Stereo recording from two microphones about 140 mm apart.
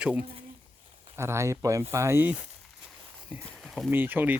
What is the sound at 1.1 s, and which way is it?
Speech, 20° right (ahead or behind).